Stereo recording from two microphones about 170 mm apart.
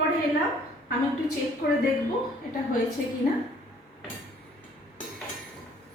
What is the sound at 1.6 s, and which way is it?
Speech, 65° left (ahead or behind).